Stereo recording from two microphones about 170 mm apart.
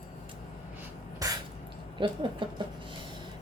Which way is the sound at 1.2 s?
20° right (ahead or behind).